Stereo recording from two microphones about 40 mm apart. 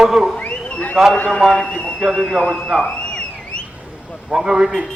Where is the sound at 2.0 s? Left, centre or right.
Centre.